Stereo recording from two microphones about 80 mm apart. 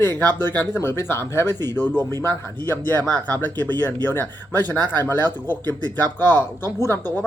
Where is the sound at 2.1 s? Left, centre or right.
Left.